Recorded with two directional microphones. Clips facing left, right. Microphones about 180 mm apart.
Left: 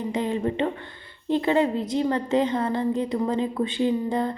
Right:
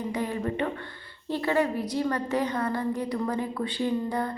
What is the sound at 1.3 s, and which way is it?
A woman's voice, 20° left (ahead or behind).